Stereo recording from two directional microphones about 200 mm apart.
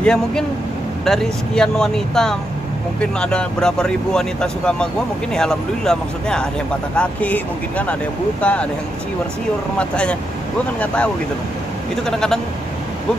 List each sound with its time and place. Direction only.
0.0 s speech: 5° left (ahead or behind)
9.8 s speech: 5° left (ahead or behind)
12.1 s speech: 5° left (ahead or behind)